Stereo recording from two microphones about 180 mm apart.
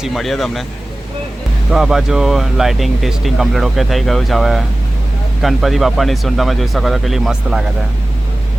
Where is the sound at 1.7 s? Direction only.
Centre (ahead or behind).